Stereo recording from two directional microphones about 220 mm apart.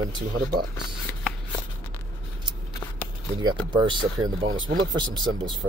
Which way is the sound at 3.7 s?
20° right (ahead or behind).